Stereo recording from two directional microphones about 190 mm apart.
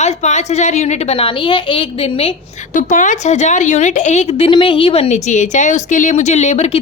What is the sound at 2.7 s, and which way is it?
A woman's voice, 45° left (ahead or behind).